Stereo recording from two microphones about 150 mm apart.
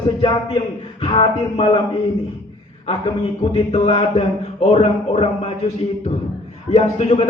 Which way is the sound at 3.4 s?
40° left (ahead or behind).